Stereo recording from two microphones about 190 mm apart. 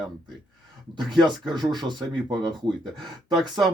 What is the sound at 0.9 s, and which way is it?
Speech, 25° right (ahead or behind).